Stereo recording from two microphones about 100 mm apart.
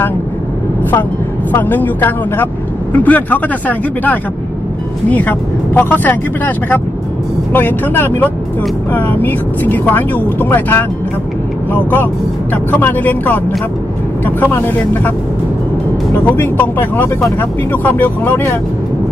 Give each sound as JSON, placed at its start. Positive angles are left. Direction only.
{"t": 1.5, "sound": "speech", "side_deg": 20}
{"t": 16.3, "sound": "speech", "side_deg": 20}